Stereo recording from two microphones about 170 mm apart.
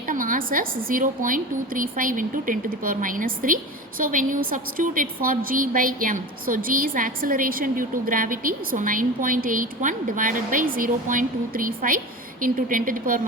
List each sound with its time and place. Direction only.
0.1 s a woman's voice: 55° right (ahead or behind)